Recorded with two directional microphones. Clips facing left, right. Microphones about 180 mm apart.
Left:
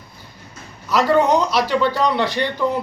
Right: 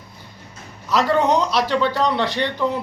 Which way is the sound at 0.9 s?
Centre (ahead or behind).